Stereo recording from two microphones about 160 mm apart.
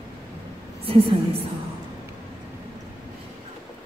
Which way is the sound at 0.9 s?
35° right (ahead or behind).